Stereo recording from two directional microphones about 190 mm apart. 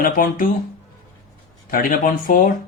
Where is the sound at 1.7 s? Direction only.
45° left (ahead or behind).